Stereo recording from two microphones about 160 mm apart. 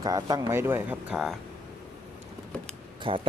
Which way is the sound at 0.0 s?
25° right (ahead or behind).